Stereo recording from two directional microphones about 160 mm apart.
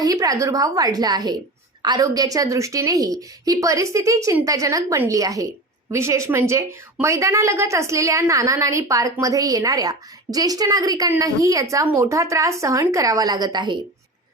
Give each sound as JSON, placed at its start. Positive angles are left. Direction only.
{"t": 0.0, "sound": "a woman's voice", "side_deg": -20}